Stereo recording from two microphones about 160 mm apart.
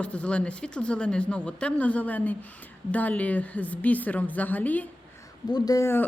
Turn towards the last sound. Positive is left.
turn(degrees=15)  # may be behind; listen again after turning